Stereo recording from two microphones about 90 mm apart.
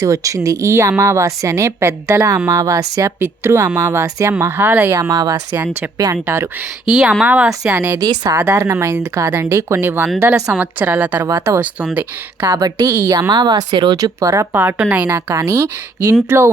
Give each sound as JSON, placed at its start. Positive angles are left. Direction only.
{"t": 0.0, "sound": "a woman's voice", "side_deg": -40}
{"t": 3.2, "sound": "speech", "side_deg": -25}
{"t": 4.9, "sound": "a woman's voice", "side_deg": -35}
{"t": 6.2, "sound": "speech", "side_deg": -25}
{"t": 6.8, "sound": "speech", "side_deg": -5}
{"t": 8.3, "sound": "a woman's voice", "side_deg": -35}
{"t": 10.5, "sound": "speech", "side_deg": -15}
{"t": 11.3, "sound": "speech", "side_deg": -30}
{"t": 12.5, "sound": "speech", "side_deg": -45}
{"t": 14.0, "sound": "a woman's voice", "side_deg": -40}
{"t": 14.5, "sound": "speech", "side_deg": -25}
{"t": 15.1, "sound": "a woman's voice", "side_deg": -30}